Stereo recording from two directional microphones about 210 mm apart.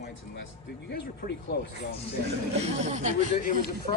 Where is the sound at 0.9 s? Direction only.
50° left (ahead or behind).